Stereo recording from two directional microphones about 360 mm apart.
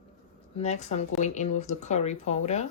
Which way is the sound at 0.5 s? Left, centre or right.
Centre.